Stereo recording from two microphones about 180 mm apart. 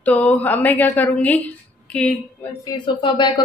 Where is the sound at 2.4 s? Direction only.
25° left (ahead or behind).